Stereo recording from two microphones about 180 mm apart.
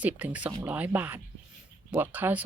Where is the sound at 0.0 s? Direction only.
10° right (ahead or behind).